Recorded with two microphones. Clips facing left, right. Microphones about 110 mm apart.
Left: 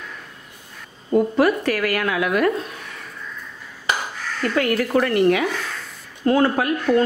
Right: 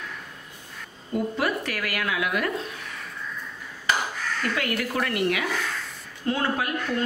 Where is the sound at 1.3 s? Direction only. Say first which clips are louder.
Left 9 dB; 45° left (ahead or behind).